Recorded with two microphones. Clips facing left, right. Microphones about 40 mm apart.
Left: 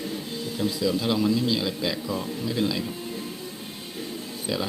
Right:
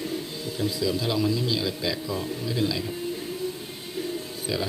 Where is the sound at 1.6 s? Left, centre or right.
Centre.